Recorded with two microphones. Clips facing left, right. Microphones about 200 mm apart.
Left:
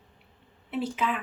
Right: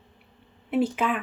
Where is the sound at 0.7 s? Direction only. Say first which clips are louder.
Right 5 dB; 50° right (ahead or behind).